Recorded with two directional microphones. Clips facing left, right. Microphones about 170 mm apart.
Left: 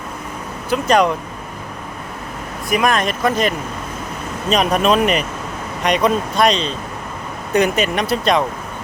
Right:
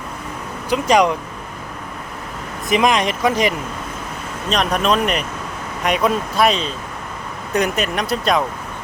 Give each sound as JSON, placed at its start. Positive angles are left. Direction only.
{"t": 0.7, "sound": "speech", "side_deg": -15}
{"t": 2.6, "sound": "speech", "side_deg": -20}
{"t": 4.4, "sound": "speech", "side_deg": 5}